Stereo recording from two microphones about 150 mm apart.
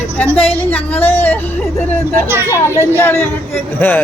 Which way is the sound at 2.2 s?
15° right (ahead or behind).